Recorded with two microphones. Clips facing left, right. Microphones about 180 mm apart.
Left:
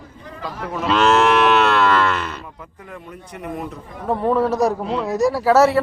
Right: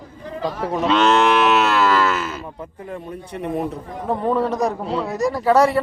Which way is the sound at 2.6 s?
30° right (ahead or behind).